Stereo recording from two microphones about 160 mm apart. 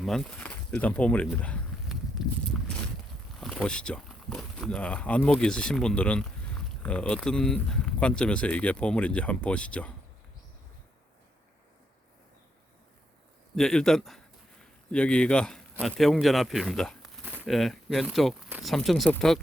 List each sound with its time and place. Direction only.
0.0 s speech: 5° left (ahead or behind)
1.9 s a sound: centre (ahead or behind)
3.4 s speech: 5° left (ahead or behind)
13.6 s a man's voice: 5° left (ahead or behind)